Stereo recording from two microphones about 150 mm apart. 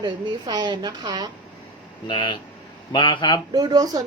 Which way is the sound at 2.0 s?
30° left (ahead or behind).